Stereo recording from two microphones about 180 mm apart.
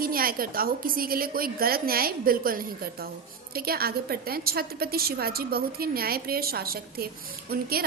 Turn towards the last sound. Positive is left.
turn(degrees=-55)  # may be behind; listen again after turning